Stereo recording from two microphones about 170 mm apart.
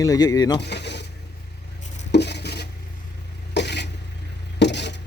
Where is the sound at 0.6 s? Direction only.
85° left.